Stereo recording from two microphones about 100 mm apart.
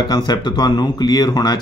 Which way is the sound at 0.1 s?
45° left (ahead or behind).